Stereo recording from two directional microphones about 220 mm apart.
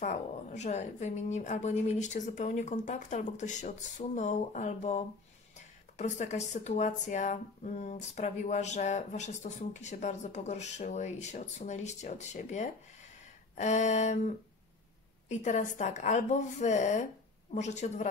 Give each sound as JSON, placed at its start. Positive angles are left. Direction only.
{"t": 0.0, "sound": "speech", "side_deg": 35}